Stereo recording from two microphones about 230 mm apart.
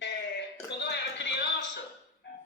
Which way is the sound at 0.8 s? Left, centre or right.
Left.